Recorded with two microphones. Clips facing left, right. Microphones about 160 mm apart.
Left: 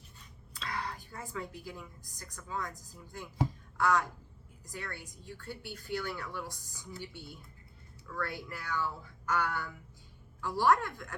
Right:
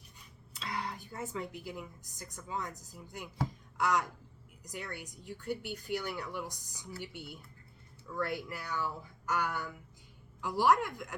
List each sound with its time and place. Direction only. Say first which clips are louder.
0.7 s a woman's voice: even; 20° right (ahead or behind)